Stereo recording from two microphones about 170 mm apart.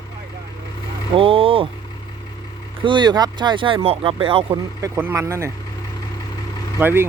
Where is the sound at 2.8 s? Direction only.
25° right (ahead or behind).